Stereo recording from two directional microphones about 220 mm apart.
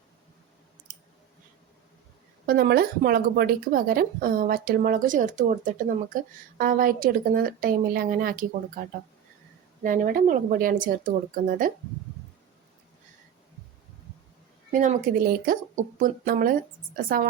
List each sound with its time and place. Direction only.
2.5 s speech: 45° right (ahead or behind)
14.7 s speech: 35° right (ahead or behind)